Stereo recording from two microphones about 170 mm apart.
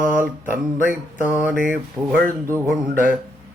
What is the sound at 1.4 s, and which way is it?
Speech, 10° right (ahead or behind).